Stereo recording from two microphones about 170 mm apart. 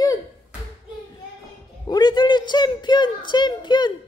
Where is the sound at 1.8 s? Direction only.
25° left (ahead or behind).